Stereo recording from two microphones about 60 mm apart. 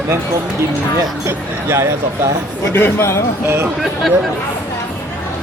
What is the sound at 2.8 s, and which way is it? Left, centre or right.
Speech, left.